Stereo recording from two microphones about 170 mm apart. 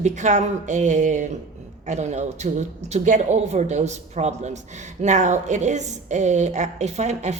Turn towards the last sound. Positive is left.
turn(degrees=-40)  # may be behind; listen again after turning